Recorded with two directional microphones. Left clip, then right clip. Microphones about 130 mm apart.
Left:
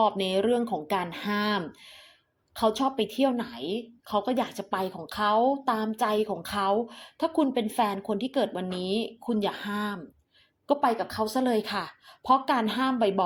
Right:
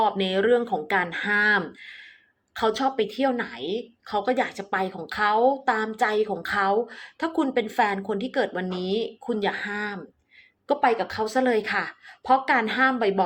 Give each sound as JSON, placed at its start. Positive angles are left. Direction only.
{"t": 0.0, "sound": "speech", "side_deg": 35}
{"t": 9.6, "sound": "speech", "side_deg": -5}
{"t": 10.7, "sound": "speech", "side_deg": 35}